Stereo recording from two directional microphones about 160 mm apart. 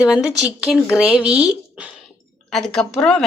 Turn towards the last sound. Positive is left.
turn(degrees=5)  # may be behind; listen again after turning